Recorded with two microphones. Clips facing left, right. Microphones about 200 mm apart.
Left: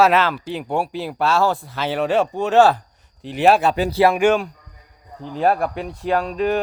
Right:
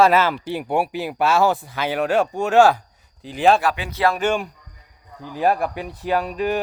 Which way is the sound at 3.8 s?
30° left (ahead or behind).